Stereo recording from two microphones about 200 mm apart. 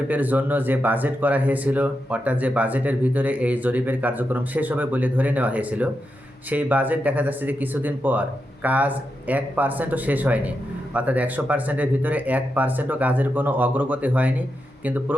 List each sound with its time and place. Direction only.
0.1 s speech: 10° right (ahead or behind)